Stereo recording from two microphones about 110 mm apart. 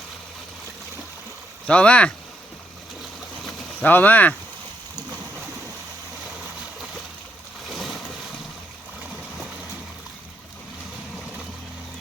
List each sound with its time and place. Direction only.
1.6 s speech: 10° left (ahead or behind)
3.8 s speech: 15° left (ahead or behind)
7.7 s a sound: centre (ahead or behind)